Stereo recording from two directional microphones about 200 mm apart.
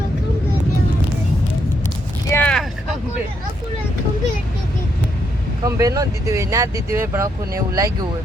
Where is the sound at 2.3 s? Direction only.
10° left (ahead or behind).